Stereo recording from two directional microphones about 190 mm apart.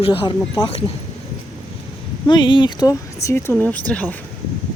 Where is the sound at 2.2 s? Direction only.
25° left (ahead or behind); by 4.1 s 10° left (ahead or behind).